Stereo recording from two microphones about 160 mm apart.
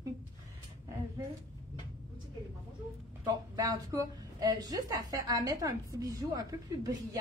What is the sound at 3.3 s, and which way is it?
A woman's voice, 20° right (ahead or behind).